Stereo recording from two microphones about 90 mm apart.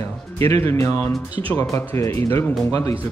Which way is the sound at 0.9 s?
40° left (ahead or behind).